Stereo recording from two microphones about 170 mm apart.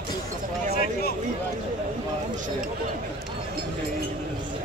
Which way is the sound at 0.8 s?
65° left (ahead or behind).